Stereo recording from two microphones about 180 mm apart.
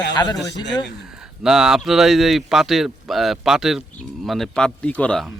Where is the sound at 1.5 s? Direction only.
Centre (ahead or behind).